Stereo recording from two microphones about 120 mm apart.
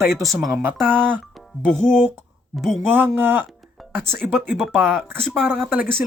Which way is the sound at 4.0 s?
Centre (ahead or behind).